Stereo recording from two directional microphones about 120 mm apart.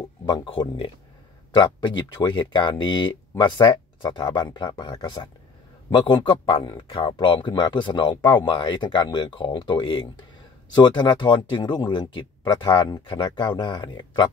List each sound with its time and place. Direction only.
0.3 s speech: 35° left (ahead or behind)